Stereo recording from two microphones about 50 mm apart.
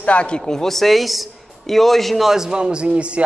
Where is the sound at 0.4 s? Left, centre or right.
Centre.